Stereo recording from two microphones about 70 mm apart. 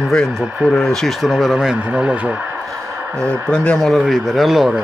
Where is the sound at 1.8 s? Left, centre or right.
Centre.